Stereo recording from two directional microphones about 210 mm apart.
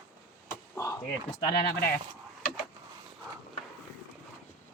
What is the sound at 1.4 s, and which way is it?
Speech, 20° left (ahead or behind).